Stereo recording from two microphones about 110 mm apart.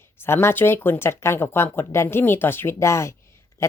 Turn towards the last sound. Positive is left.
turn(degrees=25)  # may be behind; listen again after turning